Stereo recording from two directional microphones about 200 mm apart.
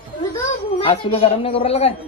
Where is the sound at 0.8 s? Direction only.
25° left (ahead or behind).